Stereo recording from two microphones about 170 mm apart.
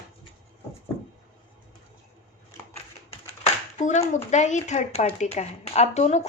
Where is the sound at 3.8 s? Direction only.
40° left (ahead or behind).